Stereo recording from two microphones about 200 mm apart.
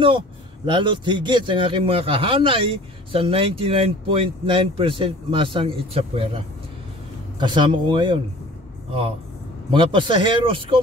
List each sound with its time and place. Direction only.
0.7 s a man's voice: 25° right (ahead or behind)
9.7 s a man's voice: 25° right (ahead or behind)